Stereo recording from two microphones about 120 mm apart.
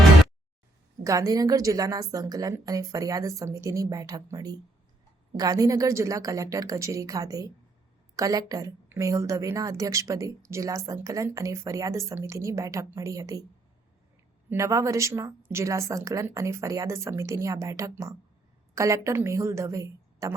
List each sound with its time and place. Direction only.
1.0 s speech: 25° right (ahead or behind)
14.5 s speech: 25° right (ahead or behind)